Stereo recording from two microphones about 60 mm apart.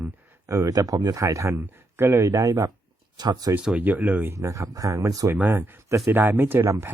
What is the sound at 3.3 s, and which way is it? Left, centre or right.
Speech, right.